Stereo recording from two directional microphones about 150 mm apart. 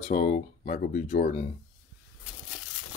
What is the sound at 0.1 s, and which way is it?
Speech, 60° left (ahead or behind).